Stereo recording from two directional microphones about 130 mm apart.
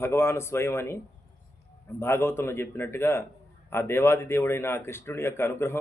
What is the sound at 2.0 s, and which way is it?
Speech, 20° left (ahead or behind).